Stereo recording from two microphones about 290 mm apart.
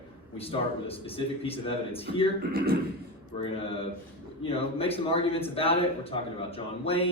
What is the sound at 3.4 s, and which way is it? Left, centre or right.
Speech, centre.